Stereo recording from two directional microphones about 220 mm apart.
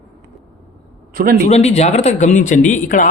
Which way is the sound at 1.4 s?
30° left (ahead or behind).